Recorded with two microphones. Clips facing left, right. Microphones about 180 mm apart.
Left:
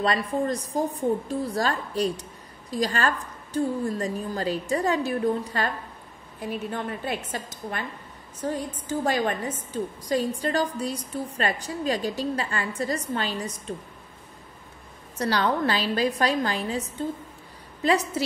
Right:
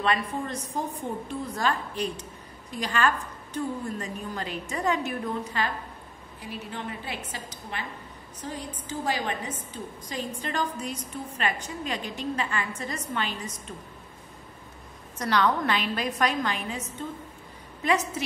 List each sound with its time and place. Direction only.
0.0 s a woman's voice: 35° left (ahead or behind)
15.1 s a woman's voice: 30° left (ahead or behind)
17.8 s a woman's voice: 35° left (ahead or behind)